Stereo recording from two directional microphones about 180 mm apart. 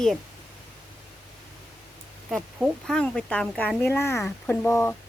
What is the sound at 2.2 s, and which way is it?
Speech, centre (ahead or behind).